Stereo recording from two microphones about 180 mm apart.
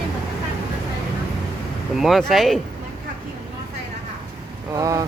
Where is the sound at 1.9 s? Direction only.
Centre (ahead or behind).